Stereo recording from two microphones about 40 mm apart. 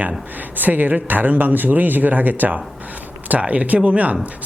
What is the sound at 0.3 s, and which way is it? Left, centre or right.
Speech, right.